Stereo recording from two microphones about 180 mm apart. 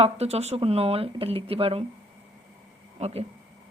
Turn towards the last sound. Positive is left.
turn(degrees=-35)  # may be behind; listen again after turning